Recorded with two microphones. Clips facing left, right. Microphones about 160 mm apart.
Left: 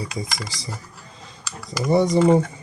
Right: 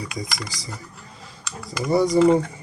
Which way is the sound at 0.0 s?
25° left (ahead or behind).